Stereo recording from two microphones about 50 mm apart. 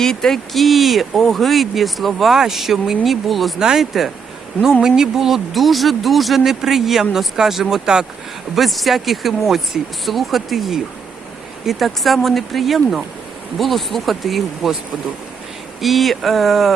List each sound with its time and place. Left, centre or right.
0.0 s speech: centre
15.8 s speech: centre